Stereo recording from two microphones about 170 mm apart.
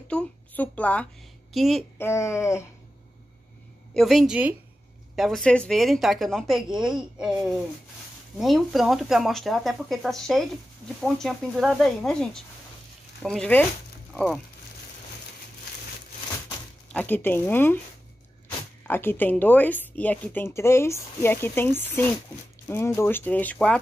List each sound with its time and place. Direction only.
0.1 s a woman's voice: 5° left (ahead or behind)
2.0 s speech: 15° left (ahead or behind)
3.9 s speech: centre (ahead or behind)
16.9 s speech: 10° left (ahead or behind)
18.9 s speech: 15° left (ahead or behind)